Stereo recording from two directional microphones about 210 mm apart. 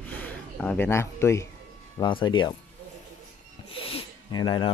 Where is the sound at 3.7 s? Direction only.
25° left (ahead or behind).